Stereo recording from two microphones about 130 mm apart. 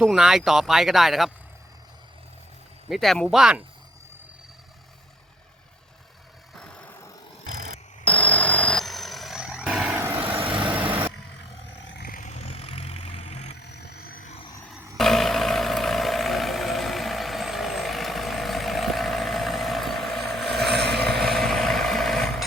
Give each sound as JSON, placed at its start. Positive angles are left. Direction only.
{"t": 0.0, "sound": "speech", "side_deg": -5}
{"t": 2.9, "sound": "speech", "side_deg": 0}
{"t": 6.6, "sound": "vehicle", "side_deg": 10}
{"t": 7.4, "sound": "vehicle", "side_deg": -75}
{"t": 8.0, "sound": "vehicle", "side_deg": 10}
{"t": 10.0, "sound": "vehicle", "side_deg": -20}
{"t": 10.4, "sound": "vehicle", "side_deg": -40}
{"t": 12.1, "sound": "vehicle", "side_deg": 65}
{"t": 14.1, "sound": "vehicle", "side_deg": 90}
{"t": 14.9, "sound": "a sound", "side_deg": 0}
{"t": 21.2, "sound": "vehicle", "side_deg": 0}